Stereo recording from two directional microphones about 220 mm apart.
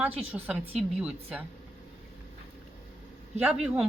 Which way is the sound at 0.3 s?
5° right (ahead or behind).